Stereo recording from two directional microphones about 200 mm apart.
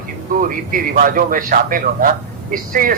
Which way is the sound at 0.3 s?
45° right (ahead or behind).